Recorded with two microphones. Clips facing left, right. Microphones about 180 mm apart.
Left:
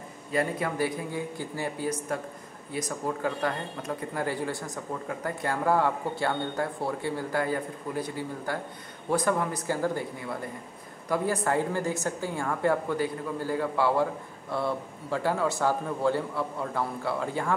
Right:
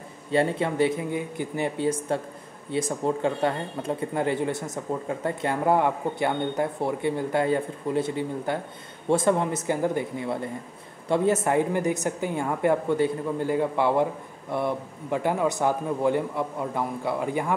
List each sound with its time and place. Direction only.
0.3 s speech: 30° right (ahead or behind)